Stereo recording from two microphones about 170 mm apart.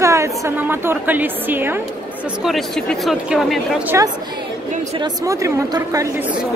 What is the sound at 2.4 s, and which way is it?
A man's voice, centre (ahead or behind).